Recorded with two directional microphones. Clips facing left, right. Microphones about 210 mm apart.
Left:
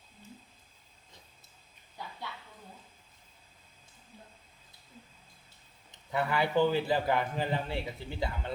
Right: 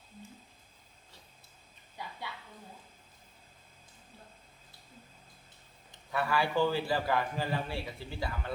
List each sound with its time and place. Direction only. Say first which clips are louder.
5.9 s a man's voice: left 1 dB; 20° left (ahead or behind)